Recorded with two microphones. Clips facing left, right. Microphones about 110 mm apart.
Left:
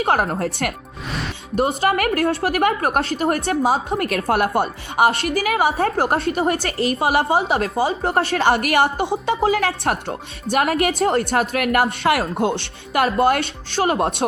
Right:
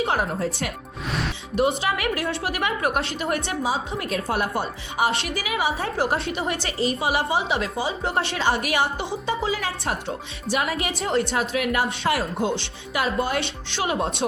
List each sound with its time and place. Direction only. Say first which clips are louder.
0.0 s speech: left 4 dB; 60° left (ahead or behind)
1.5 s a woman's voice: left 4 dB; 45° left (ahead or behind)
3.6 s speech: left 7 dB; 65° left (ahead or behind)
5.5 s a woman's voice: left 3 dB; 60° left (ahead or behind); by 6.7 s 45° left (ahead or behind)
6.7 s a woman's voice: left 3 dB; 65° left (ahead or behind); by 8.4 s 45° left (ahead or behind)
8.4 s speech: left 5 dB; 65° left (ahead or behind)